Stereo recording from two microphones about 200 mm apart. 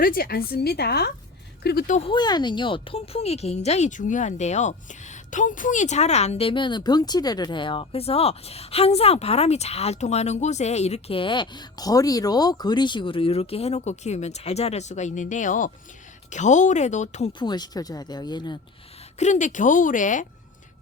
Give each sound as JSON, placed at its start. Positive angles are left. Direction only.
{"t": 0.0, "sound": "a woman's voice", "side_deg": 45}
{"t": 2.0, "sound": "speech", "side_deg": 25}
{"t": 17.4, "sound": "speech", "side_deg": 20}
{"t": 19.2, "sound": "speech", "side_deg": 35}